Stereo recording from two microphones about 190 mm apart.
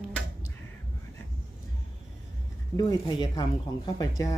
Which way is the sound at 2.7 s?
20° left (ahead or behind).